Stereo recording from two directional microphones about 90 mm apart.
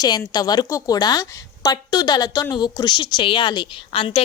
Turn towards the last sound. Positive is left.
turn(degrees=90)